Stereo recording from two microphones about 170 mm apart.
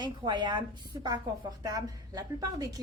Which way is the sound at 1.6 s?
20° right (ahead or behind).